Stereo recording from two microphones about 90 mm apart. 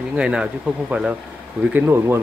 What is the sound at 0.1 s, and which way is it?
Speech, 10° right (ahead or behind).